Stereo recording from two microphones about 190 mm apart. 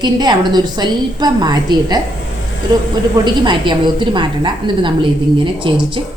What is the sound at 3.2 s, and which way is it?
A woman's voice, 25° right (ahead or behind).